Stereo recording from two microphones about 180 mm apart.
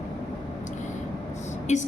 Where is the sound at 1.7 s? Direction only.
40° left (ahead or behind).